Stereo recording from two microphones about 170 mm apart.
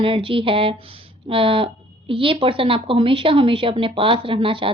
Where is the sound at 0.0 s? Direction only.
30° right (ahead or behind).